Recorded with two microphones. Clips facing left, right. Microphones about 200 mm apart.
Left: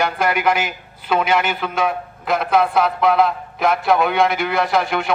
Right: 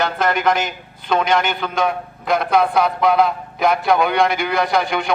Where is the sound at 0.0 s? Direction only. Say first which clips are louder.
Even; 10° left (ahead or behind).